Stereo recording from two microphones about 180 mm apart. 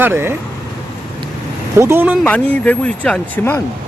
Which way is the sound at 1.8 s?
15° right (ahead or behind).